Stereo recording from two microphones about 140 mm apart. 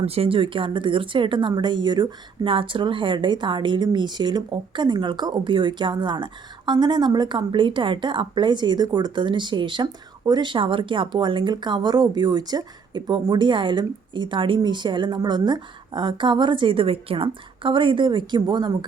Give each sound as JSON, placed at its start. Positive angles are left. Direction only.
{"t": 0.0, "sound": "speech", "side_deg": -45}